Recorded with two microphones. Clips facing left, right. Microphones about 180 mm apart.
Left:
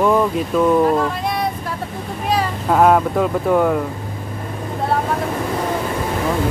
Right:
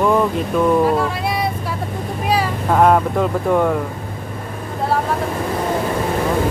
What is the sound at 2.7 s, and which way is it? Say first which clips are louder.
Speech: even; centre (ahead or behind).